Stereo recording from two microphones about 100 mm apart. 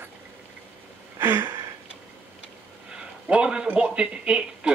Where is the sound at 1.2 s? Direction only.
25° right (ahead or behind).